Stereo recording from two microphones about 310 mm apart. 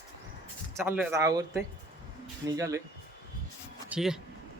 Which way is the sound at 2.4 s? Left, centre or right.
Centre.